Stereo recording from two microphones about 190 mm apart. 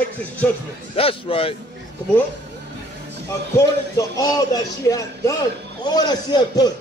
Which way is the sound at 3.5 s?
20° left (ahead or behind).